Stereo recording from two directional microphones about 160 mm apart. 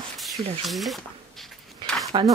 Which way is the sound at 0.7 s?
Centre (ahead or behind).